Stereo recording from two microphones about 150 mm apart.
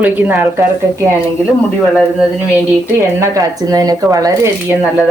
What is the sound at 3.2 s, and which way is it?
Speech, 25° right (ahead or behind).